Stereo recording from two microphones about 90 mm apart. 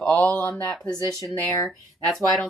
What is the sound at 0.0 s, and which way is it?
Speech, 10° left (ahead or behind).